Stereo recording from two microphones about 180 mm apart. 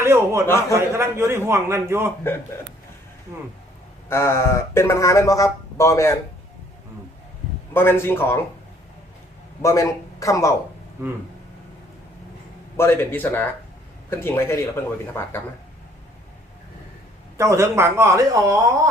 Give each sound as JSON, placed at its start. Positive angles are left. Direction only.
{"t": 0.0, "sound": "a sound", "side_deg": -15}
{"t": 0.7, "sound": "a man's voice", "side_deg": -15}
{"t": 4.1, "sound": "speech", "side_deg": 15}
{"t": 7.7, "sound": "speech", "side_deg": 10}
{"t": 9.6, "sound": "speech", "side_deg": 15}
{"t": 12.7, "sound": "speech", "side_deg": 15}
{"t": 17.3, "sound": "a man's voice", "side_deg": -15}